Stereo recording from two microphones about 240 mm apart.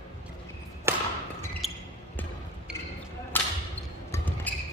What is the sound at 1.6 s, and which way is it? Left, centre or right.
Basketball bounce, centre.